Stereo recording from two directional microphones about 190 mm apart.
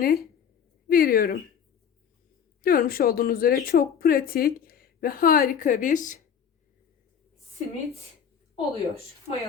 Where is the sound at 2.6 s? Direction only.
50° left (ahead or behind).